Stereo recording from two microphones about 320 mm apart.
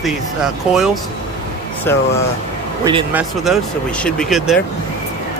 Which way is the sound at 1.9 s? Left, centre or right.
Centre.